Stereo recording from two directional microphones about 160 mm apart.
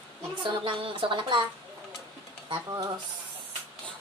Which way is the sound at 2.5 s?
25° right (ahead or behind).